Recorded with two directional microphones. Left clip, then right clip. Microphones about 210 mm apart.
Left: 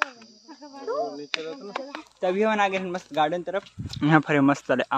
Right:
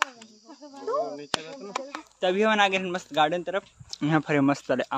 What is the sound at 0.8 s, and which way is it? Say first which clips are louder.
Speech: even; 45° right (ahead or behind).